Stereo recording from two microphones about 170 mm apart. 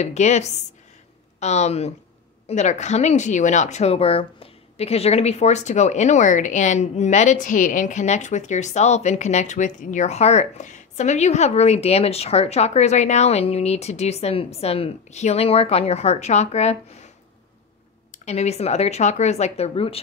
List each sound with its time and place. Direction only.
0.0 s speech: 40° left (ahead or behind)
18.2 s speech: 40° left (ahead or behind)